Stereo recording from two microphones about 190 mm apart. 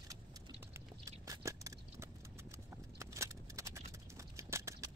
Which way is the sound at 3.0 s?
15° right (ahead or behind).